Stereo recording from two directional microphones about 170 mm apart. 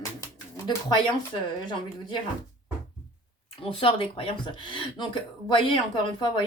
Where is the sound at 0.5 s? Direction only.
15° left (ahead or behind).